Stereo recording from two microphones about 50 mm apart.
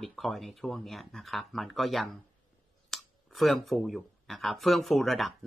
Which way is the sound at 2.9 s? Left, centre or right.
Centre.